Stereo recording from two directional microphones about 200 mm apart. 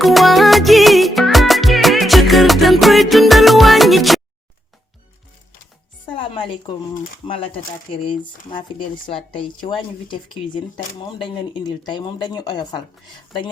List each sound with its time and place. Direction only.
0.0 s music: centre (ahead or behind)
6.1 s music: 25° left (ahead or behind)
7.3 s speech: 25° left (ahead or behind)